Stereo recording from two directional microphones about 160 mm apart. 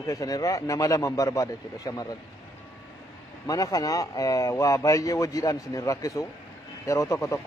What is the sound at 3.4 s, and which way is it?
A man's voice, 20° left (ahead or behind).